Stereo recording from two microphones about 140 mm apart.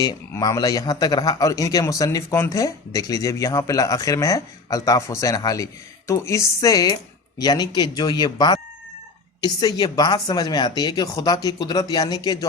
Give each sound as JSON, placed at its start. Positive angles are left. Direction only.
{"t": 0.0, "sound": "speech", "side_deg": 25}